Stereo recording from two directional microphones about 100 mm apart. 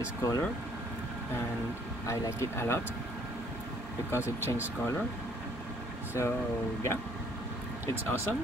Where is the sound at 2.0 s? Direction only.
25° left (ahead or behind).